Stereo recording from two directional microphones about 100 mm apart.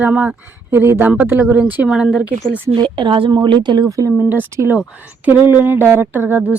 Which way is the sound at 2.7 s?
55° right (ahead or behind).